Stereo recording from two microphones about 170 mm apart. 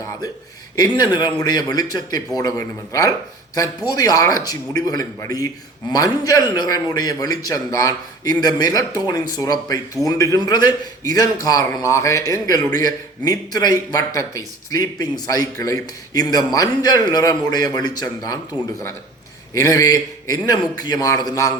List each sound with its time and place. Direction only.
0.8 s a man's voice: 25° left (ahead or behind)
19.5 s a man's voice: 20° left (ahead or behind)